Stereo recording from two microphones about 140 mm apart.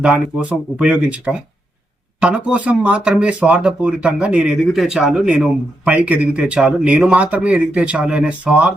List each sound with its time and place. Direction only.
0.0 s speech: 5° right (ahead or behind)